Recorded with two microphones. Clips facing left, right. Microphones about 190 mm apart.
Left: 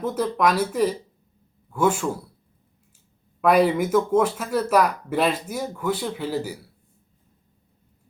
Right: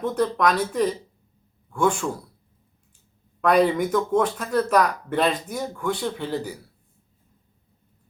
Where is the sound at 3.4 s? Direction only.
5° left (ahead or behind).